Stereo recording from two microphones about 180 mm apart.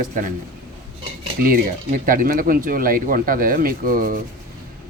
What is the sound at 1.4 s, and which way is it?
Speech, 50° right (ahead or behind).